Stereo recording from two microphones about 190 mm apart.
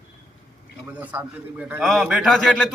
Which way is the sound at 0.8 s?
10° right (ahead or behind).